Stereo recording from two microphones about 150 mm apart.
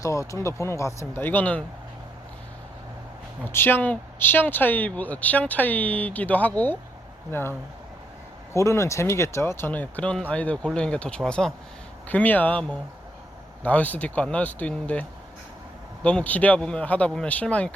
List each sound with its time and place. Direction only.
0.0 s speech: 20° left (ahead or behind)
3.5 s speech: 15° left (ahead or behind)
8.5 s speech: 20° left (ahead or behind)
16.0 s speech: 10° left (ahead or behind)